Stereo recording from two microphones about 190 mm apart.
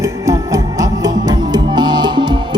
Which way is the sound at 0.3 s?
20° right (ahead or behind).